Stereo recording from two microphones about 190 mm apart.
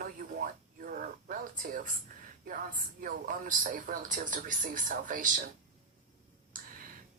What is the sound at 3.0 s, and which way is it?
Speech, 45° right (ahead or behind).